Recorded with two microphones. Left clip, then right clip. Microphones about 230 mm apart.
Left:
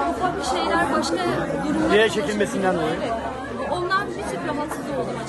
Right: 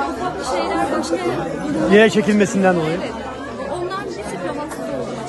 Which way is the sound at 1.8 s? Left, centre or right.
Right.